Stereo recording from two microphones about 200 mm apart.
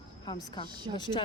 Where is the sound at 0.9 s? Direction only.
30° right (ahead or behind).